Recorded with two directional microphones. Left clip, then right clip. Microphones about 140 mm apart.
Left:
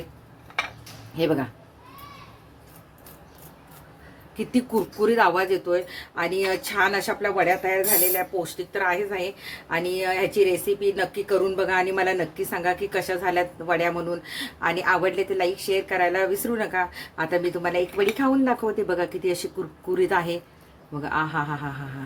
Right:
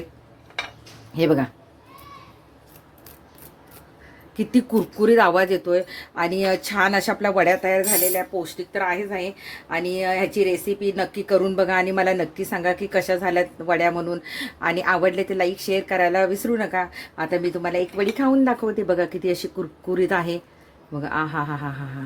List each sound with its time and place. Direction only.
1.1 s speech: 55° right (ahead or behind)
4.4 s speech: 45° right (ahead or behind)
8.4 s a woman's voice: 25° right (ahead or behind)